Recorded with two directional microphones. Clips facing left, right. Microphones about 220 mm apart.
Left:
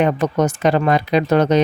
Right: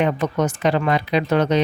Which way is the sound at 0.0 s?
45° left (ahead or behind).